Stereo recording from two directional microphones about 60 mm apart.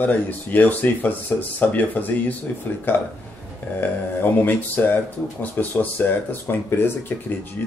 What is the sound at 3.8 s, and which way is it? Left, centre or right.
Speech, left.